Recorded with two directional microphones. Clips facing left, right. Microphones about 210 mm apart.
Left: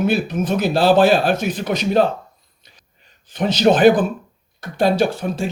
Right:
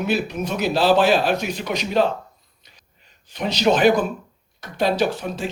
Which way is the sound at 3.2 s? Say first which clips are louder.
Left 4 dB; 50° left (ahead or behind).